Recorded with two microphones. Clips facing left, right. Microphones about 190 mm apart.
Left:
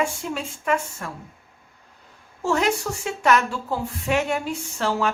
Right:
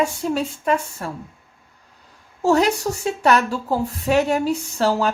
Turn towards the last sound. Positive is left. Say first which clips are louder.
# right 4 dB
turn(degrees=-35)  # may be behind; listen again after turning